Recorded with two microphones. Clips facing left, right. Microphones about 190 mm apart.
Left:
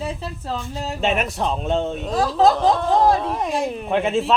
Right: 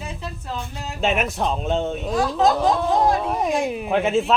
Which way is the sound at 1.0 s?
Centre (ahead or behind).